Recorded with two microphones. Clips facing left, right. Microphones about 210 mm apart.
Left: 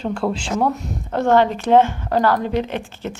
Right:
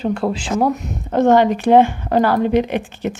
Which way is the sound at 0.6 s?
15° right (ahead or behind).